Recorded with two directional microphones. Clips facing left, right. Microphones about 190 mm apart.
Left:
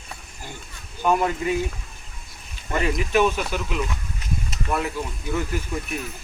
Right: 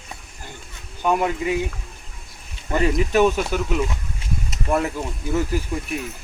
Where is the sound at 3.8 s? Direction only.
25° right (ahead or behind).